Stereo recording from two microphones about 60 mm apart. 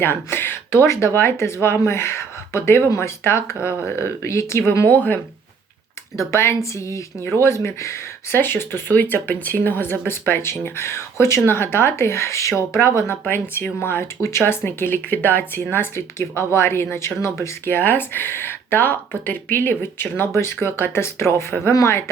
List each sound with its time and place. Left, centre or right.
0.0 s speech: left
4.9 s speech: left
6.1 s speech: left
8.4 s speech: left